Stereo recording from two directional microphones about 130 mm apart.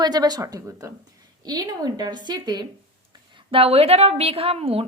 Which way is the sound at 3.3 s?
45° right (ahead or behind).